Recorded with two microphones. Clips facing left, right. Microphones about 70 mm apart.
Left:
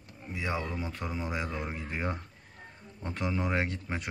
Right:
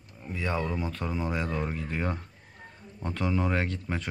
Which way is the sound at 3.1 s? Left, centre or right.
Centre.